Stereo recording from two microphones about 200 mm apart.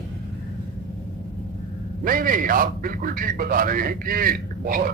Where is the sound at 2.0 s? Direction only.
45° right (ahead or behind).